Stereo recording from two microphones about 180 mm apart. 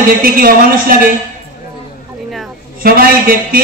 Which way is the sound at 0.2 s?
55° right (ahead or behind).